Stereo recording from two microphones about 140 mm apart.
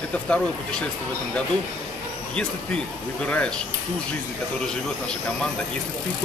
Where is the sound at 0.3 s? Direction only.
5° left (ahead or behind).